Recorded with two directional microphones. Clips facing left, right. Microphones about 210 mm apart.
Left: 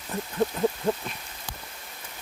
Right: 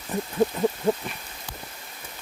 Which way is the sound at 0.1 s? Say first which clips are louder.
Right 4 dB; 15° right (ahead or behind).